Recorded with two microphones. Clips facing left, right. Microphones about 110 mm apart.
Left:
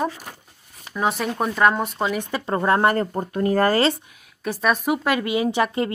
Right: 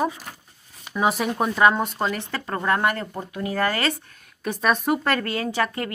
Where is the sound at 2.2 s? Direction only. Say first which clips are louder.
Left 4 dB; 20° left (ahead or behind); by 3.8 s 40° left (ahead or behind).